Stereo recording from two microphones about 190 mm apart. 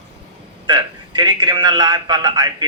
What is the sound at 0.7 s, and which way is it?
A man's voice, 25° right (ahead or behind).